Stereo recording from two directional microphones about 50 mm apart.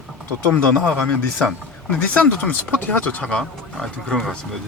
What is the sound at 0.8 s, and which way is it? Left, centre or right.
Speech, left.